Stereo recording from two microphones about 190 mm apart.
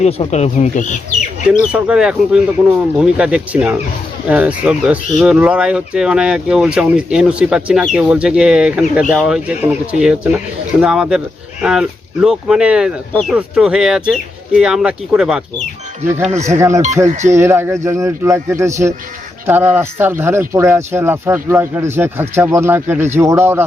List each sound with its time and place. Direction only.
0.0 s speech: 35° left (ahead or behind)
1.7 s speech: 5° right (ahead or behind)
16.2 s speech: 35° right (ahead or behind)
16.5 s speech: 15° right (ahead or behind)